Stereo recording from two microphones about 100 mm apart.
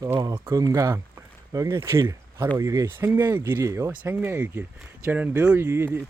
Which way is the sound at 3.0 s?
20° right (ahead or behind).